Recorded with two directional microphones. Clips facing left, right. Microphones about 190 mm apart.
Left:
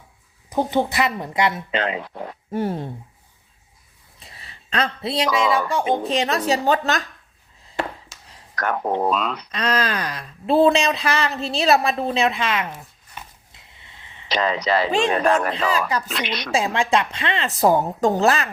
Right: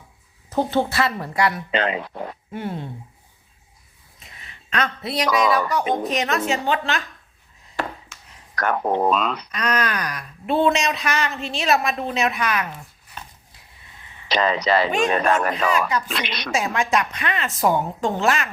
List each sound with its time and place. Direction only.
0.5 s speech: 15° left (ahead or behind)
1.7 s speech: 70° right (ahead or behind)
2.5 s speech: 40° left (ahead or behind)
4.2 s speech: 35° left (ahead or behind)
8.1 s a sound: 35° left (ahead or behind)
8.5 s speech: 70° right (ahead or behind)
9.5 s speech: 30° left (ahead or behind)
13.5 s a sound: 20° left (ahead or behind)
14.3 s speech: 70° right (ahead or behind)
15.5 s speech: 30° left (ahead or behind)
16.2 s speech: 70° right (ahead or behind)
16.5 s speech: 30° left (ahead or behind)